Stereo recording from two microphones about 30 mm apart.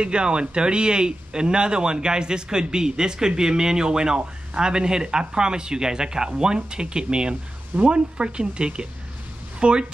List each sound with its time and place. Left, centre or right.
0.0 s speech: right